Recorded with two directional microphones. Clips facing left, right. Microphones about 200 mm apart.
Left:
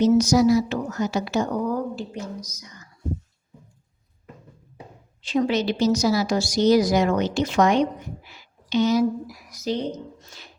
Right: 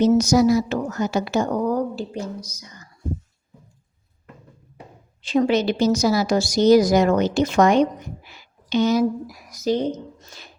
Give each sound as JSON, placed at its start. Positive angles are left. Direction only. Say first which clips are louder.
{"t": 0.0, "sound": "a woman's voice", "louder": "right 1 dB", "side_deg": -50}
{"t": 5.3, "sound": "a woman's voice", "louder": "right 3 dB", "side_deg": -50}
{"t": 8.3, "sound": "a sound", "louder": "right 2 dB", "side_deg": -50}
{"t": 10.3, "sound": "music", "louder": "right 2 dB", "side_deg": -45}